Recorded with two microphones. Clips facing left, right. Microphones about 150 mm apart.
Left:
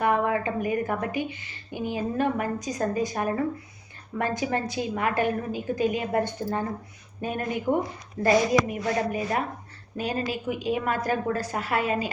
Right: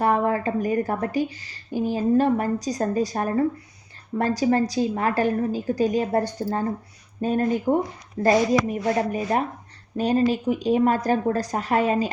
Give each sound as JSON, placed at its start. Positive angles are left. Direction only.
{"t": 0.0, "sound": "a woman's voice", "side_deg": -35}